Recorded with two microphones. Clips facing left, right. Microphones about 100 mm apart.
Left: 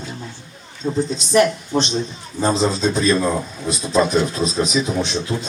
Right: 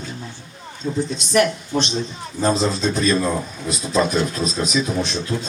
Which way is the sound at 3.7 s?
25° left (ahead or behind).